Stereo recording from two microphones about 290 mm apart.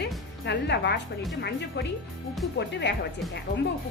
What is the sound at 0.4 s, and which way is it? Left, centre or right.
A woman's voice, left.